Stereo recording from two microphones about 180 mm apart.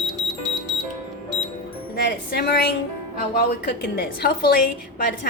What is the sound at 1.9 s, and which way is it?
A woman's voice, 60° left (ahead or behind).